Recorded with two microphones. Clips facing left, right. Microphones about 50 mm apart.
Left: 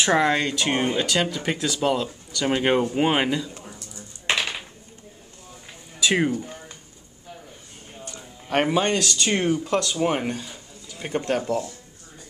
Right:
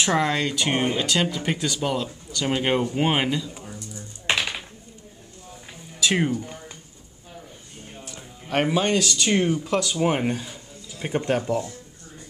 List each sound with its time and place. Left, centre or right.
0.1 s speech: centre
0.6 s speech: centre
0.9 s speech: centre
1.2 s speech: centre
6.0 s speech: centre
8.5 s speech: centre